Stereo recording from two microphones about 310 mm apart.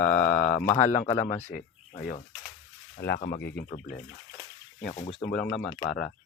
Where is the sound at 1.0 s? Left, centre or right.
Centre.